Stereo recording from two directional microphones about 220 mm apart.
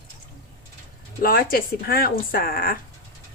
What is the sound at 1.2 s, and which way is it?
Speech, 40° left (ahead or behind).